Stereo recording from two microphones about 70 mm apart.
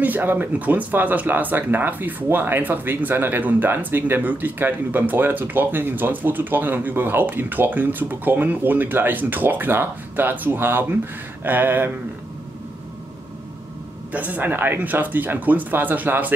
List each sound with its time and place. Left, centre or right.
0.0 s speech: right
14.1 s speech: right